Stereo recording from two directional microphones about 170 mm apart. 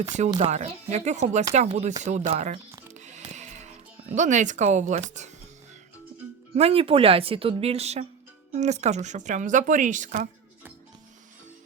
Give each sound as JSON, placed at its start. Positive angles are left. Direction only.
{"t": 0.3, "sound": "speech", "side_deg": -40}
{"t": 2.9, "sound": "music", "side_deg": -45}
{"t": 6.6, "sound": "speech", "side_deg": -35}